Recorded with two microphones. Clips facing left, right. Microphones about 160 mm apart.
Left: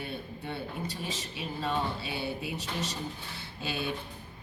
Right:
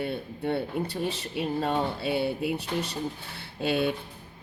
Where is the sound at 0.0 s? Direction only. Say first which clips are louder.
Right 8 dB; 60° right (ahead or behind).